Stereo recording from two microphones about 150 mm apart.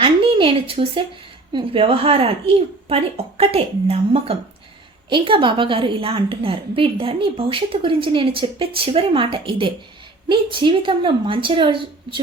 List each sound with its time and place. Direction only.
0.0 s a woman's voice: 35° right (ahead or behind)